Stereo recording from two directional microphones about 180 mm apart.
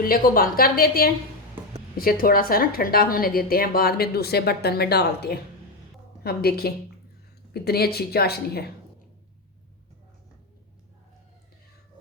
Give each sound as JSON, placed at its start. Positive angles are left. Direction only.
{"t": 0.0, "sound": "a woman's voice", "side_deg": 55}